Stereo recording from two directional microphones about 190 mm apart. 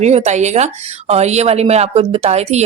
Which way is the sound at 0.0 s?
35° right (ahead or behind).